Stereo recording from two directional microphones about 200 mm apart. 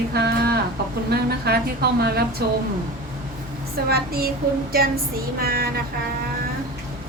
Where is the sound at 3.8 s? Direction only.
50° right (ahead or behind).